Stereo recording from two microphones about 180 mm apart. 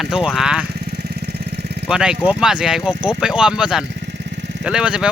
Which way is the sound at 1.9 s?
5° right (ahead or behind).